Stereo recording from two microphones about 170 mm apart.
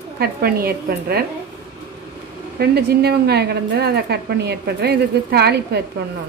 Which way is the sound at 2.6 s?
70° right (ahead or behind).